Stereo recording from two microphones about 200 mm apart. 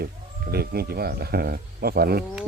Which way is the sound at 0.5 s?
50° right (ahead or behind).